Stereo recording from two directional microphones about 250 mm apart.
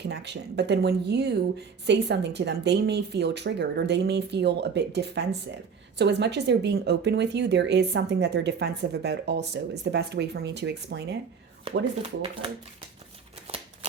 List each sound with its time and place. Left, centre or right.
0.0 s speech: right